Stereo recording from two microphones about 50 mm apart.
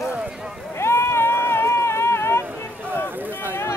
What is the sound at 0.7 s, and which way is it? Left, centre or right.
Sheep, left.